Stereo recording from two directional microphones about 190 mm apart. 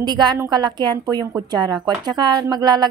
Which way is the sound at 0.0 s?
20° right (ahead or behind).